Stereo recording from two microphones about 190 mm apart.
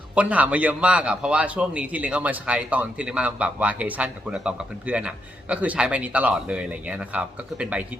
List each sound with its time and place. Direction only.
0.1 s a man's voice: 5° right (ahead or behind)